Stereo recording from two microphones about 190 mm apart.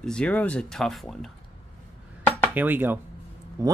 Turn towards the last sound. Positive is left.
turn(degrees=-20)  # may be behind; listen again after turning